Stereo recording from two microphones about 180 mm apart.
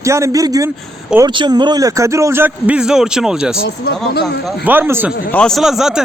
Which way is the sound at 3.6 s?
70° left (ahead or behind).